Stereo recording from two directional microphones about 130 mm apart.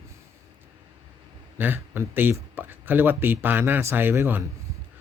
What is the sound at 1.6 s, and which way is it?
Speech, 15° right (ahead or behind).